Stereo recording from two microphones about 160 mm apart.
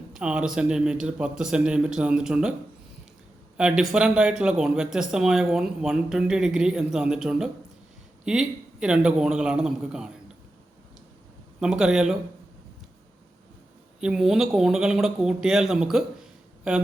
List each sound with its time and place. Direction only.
0.1 s speech: 5° right (ahead or behind)
3.6 s speech: 5° right (ahead or behind)
11.6 s speech: 5° right (ahead or behind)
14.0 s speech: 5° right (ahead or behind)